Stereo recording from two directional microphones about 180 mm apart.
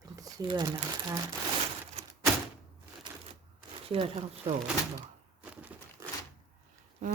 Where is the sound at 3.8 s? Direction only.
30° right (ahead or behind).